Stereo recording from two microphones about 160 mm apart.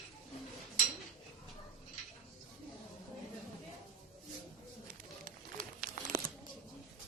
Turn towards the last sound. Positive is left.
turn(degrees=-60)  # may be behind; listen again after turning